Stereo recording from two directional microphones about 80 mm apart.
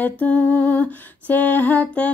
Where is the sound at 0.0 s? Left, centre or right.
Centre.